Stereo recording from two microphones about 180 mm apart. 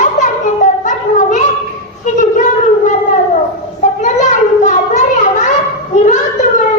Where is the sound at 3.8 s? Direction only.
40° left (ahead or behind).